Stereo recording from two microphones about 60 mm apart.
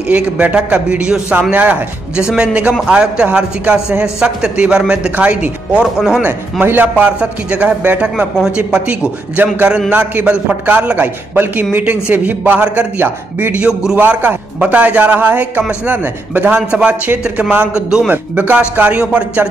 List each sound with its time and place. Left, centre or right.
0.1 s speech: right
2.2 s a man's voice: centre
5.1 s speech: right
5.7 s a man's voice: centre
6.6 s speech: right
8.4 s a man's voice: centre
11.0 s a man's voice: right
13.0 s a man's voice: right
13.6 s a man's voice: centre
13.9 s a man's voice: right
16.7 s speech: centre
17.7 s a man's voice: centre
18.1 s a man's voice: right